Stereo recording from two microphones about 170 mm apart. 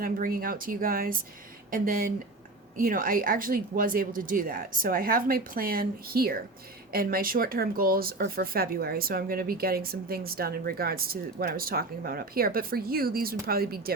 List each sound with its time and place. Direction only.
0.0 s speech: 60° right (ahead or behind)